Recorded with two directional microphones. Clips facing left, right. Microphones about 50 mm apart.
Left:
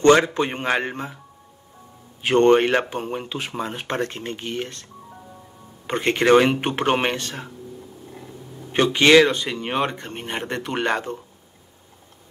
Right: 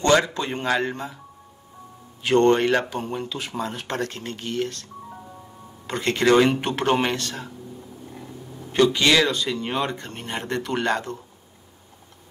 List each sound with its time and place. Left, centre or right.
0.0 s speech: left
2.2 s speech: left
5.9 s speech: left
8.7 s speech: left